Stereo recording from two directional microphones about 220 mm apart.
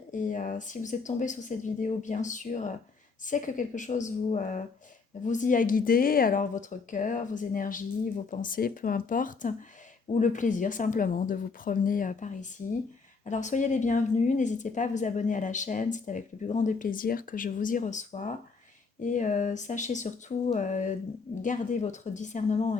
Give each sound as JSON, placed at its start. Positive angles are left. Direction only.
{"t": 0.1, "sound": "speech", "side_deg": 35}